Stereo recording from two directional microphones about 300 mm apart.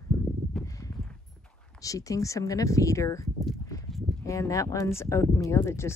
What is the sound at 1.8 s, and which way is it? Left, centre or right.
Speech, centre.